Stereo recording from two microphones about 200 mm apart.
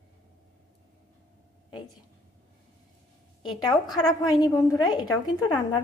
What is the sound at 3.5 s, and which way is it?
A woman's voice, 20° left (ahead or behind).